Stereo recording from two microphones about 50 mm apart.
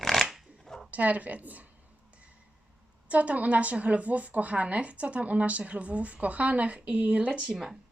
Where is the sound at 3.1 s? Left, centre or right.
Right.